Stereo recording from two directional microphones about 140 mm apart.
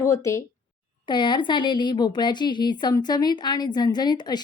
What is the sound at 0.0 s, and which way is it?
Speech, 20° left (ahead or behind).